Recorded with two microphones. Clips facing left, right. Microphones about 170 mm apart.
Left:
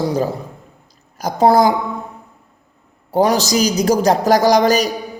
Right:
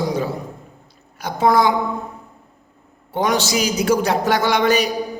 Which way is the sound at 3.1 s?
35° left (ahead or behind).